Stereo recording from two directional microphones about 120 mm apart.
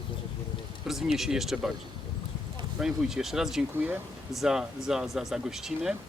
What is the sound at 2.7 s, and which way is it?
Speech, 5° right (ahead or behind).